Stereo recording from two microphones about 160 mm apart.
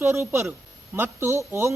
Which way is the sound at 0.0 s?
15° right (ahead or behind).